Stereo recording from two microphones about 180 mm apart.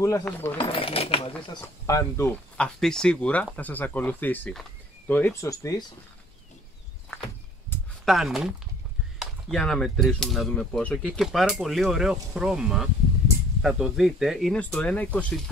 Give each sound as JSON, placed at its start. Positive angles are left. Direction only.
{"t": 0.2, "sound": "speech", "side_deg": 10}
{"t": 0.6, "sound": "speech", "side_deg": 30}
{"t": 1.6, "sound": "speech", "side_deg": 15}
{"t": 8.0, "sound": "speech", "side_deg": 0}